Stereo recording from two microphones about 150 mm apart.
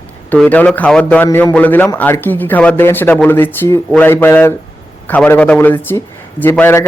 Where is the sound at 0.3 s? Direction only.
10° left (ahead or behind).